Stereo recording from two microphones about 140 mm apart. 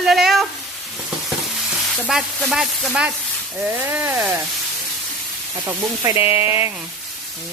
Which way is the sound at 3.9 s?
15° right (ahead or behind).